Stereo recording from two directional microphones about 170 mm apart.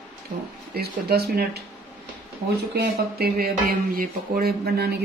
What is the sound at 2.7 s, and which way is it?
Speech, 70° right (ahead or behind).